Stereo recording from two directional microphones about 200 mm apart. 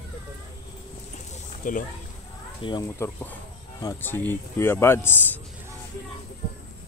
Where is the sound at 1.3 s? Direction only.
40° left (ahead or behind).